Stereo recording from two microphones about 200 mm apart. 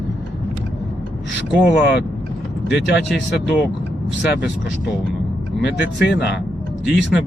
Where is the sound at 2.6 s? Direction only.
60° left (ahead or behind).